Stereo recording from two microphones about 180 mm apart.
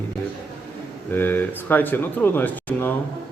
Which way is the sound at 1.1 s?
10° left (ahead or behind).